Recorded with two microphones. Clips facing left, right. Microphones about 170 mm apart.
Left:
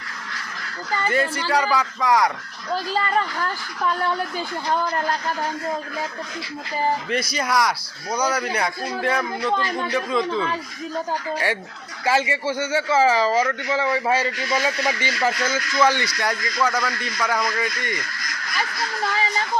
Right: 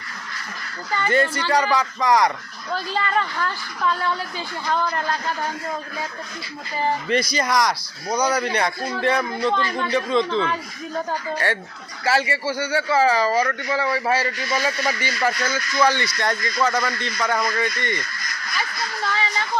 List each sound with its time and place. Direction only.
1.0 s speech: 5° left (ahead or behind)
4.6 s a man's voice: 15° left (ahead or behind)
7.1 s speech: 5° left (ahead or behind)
12.0 s a man's voice: 20° left (ahead or behind)
16.1 s a man's voice: 10° left (ahead or behind)